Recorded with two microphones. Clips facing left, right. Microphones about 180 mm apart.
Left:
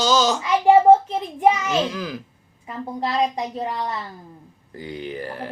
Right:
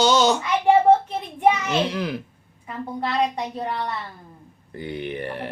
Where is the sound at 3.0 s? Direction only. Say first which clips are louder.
Left 1 dB; 40° left (ahead or behind).